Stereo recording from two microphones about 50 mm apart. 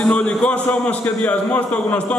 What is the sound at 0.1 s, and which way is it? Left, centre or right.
A man's voice, left.